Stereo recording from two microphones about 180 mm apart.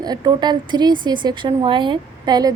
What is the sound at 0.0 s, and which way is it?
A woman's voice, 25° right (ahead or behind).